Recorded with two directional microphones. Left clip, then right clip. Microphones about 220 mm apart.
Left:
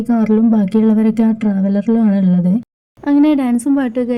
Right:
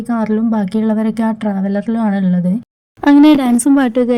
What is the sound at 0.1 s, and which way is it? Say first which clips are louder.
Speech: left 2 dB; 10° right (ahead or behind).